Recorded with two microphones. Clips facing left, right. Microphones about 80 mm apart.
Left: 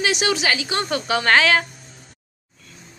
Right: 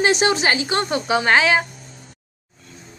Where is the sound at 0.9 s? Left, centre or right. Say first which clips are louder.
Even; centre.